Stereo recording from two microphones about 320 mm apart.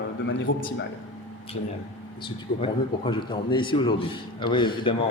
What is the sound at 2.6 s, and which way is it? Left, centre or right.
A man's voice, centre.